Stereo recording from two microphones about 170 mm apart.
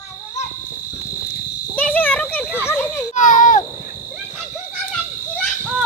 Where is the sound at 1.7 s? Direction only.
10° left (ahead or behind).